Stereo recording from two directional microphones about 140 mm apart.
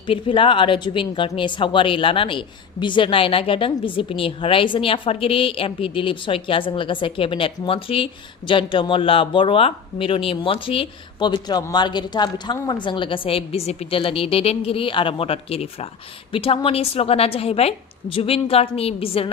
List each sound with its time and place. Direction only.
0.0 s a woman's voice: 40° left (ahead or behind)